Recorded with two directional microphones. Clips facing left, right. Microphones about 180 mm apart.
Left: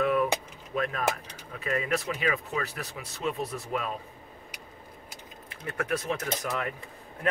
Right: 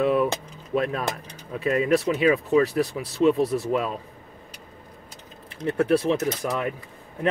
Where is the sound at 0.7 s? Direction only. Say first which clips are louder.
Right 4 dB; 35° right (ahead or behind).